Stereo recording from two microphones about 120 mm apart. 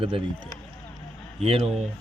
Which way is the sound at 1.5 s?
55° right (ahead or behind).